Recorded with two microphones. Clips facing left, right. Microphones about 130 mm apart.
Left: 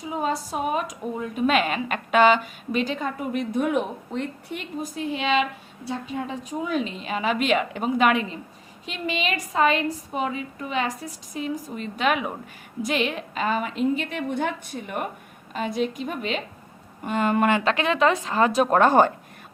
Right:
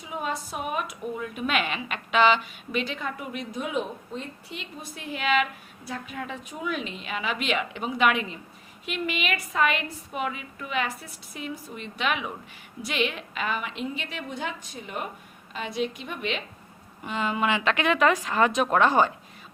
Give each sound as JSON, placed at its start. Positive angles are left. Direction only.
{"t": 0.1, "sound": "a woman's voice", "side_deg": 35}
{"t": 3.5, "sound": "speech", "side_deg": 60}
{"t": 4.8, "sound": "a woman's voice", "side_deg": 30}